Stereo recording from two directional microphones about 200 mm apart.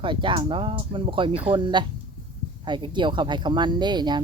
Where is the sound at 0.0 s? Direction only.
25° right (ahead or behind).